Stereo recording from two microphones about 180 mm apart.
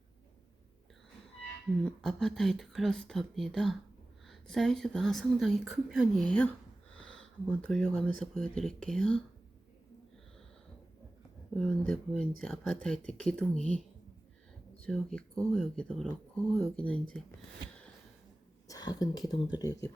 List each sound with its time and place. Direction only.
1.8 s speech: centre (ahead or behind)
11.9 s speech: 5° left (ahead or behind)
14.8 s speech: 5° left (ahead or behind)
18.7 s speech: 20° left (ahead or behind)